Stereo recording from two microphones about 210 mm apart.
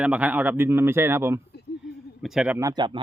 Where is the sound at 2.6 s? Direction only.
20° right (ahead or behind).